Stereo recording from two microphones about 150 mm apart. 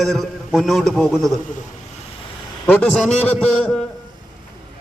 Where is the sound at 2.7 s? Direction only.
10° left (ahead or behind).